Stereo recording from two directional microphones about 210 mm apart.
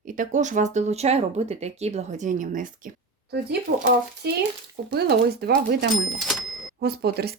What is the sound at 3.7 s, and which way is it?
Speech, 50° right (ahead or behind).